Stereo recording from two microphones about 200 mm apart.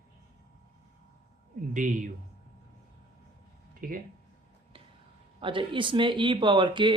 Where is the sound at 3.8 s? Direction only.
45° right (ahead or behind).